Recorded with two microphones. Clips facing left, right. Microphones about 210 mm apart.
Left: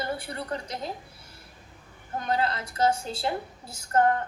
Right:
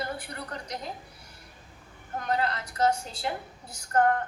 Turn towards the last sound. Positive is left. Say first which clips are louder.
# left 1 dB
turn(degrees=25)  # may be behind; listen again after turning